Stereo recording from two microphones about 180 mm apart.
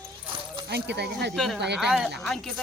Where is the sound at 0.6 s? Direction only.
65° right (ahead or behind).